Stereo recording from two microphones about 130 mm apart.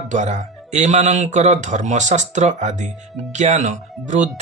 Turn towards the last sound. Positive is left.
turn(degrees=-70)  # may be behind; listen again after turning